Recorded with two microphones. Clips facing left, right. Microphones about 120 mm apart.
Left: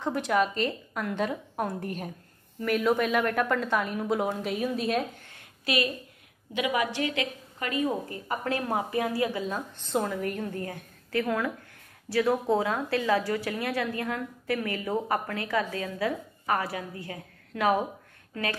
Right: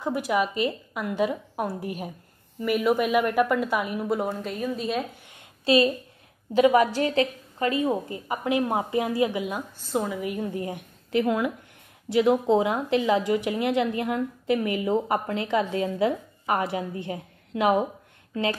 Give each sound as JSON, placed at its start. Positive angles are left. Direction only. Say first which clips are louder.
{"t": 0.0, "sound": "a woman's voice", "louder": "right 1 dB", "side_deg": -10}
{"t": 5.3, "sound": "a sound", "louder": "right 10 dB", "side_deg": -30}
{"t": 6.5, "sound": "a woman's voice", "louder": "right 9 dB", "side_deg": -40}
{"t": 8.3, "sound": "a woman's voice", "louder": "right 4 dB", "side_deg": -15}